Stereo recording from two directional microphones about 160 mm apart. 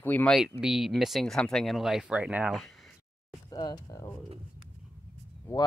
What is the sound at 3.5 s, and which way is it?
Speech, 25° left (ahead or behind).